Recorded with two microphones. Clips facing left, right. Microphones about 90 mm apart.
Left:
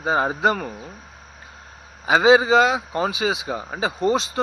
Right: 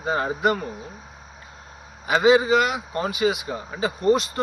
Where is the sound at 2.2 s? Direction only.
90° left.